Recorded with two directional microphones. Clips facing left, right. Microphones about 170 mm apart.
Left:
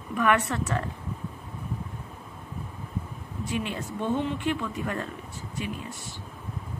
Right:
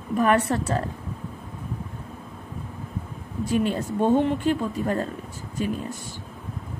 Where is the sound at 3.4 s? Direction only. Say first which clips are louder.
Right 8 dB; 40° right (ahead or behind).